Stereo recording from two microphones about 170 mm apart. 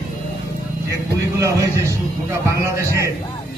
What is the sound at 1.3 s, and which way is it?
A man's voice, 15° right (ahead or behind).